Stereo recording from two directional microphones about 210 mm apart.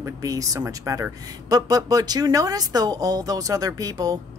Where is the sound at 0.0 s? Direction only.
15° right (ahead or behind).